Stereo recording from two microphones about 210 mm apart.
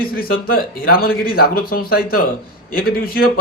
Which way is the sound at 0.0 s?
45° left (ahead or behind).